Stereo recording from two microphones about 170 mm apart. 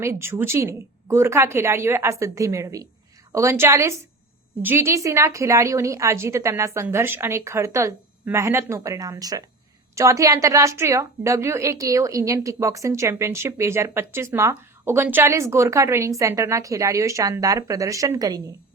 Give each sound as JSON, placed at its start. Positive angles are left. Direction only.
{"t": 0.0, "sound": "a woman's voice", "side_deg": -15}